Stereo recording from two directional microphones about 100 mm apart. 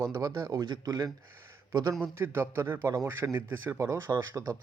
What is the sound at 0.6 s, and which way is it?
Speech, 45° right (ahead or behind).